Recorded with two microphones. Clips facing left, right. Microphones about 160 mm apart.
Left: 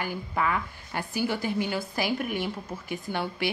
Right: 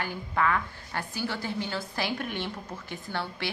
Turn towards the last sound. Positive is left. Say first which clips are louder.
# left 4 dB
turn(degrees=15)  # may be behind; listen again after turning